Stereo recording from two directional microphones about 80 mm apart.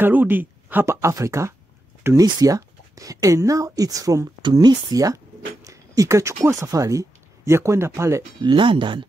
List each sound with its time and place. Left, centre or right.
0.0 s speech: right
0.8 s speech: right
4.4 s speech: right
8.4 s speech: right